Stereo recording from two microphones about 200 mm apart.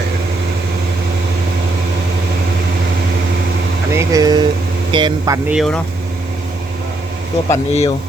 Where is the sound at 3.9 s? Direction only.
15° right (ahead or behind).